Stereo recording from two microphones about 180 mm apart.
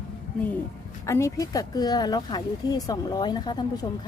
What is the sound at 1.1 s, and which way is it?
Speech, 15° left (ahead or behind).